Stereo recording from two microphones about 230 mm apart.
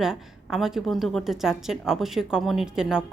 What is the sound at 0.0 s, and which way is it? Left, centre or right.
A woman's voice, centre.